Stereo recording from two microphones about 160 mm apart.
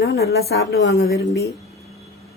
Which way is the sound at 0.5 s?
75° left (ahead or behind).